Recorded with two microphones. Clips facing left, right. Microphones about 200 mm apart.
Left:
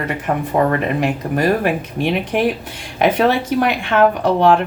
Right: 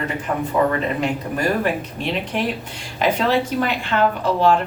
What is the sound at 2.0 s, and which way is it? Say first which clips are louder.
A woman's voice: left 7 dB; 60° left (ahead or behind).